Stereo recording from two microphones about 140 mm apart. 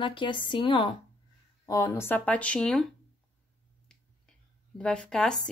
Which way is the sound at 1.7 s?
20° left (ahead or behind).